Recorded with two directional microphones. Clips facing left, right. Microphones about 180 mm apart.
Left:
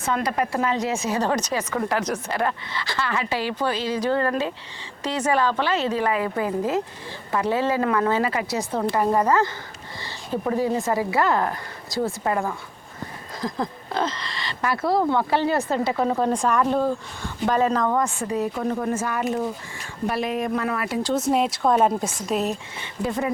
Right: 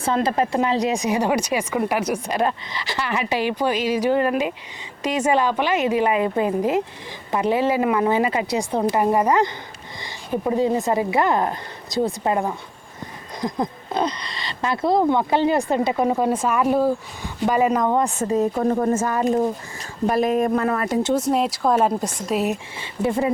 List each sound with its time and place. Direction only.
0.0 s speech: 30° right (ahead or behind)
18.2 s speech: 45° right (ahead or behind)
21.2 s speech: centre (ahead or behind)
23.0 s speech: 25° right (ahead or behind)